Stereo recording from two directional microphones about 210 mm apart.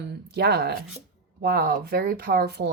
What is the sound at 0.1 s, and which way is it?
Speech, 50° right (ahead or behind).